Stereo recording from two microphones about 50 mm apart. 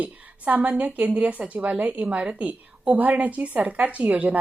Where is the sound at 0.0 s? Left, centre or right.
Right.